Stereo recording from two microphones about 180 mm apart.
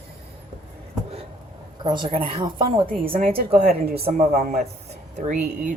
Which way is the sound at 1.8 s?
25° right (ahead or behind).